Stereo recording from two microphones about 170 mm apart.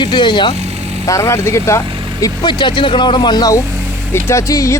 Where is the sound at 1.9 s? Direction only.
30° right (ahead or behind).